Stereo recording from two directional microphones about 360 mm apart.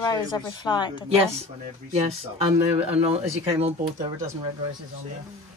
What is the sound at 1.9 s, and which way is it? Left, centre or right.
Speech, centre.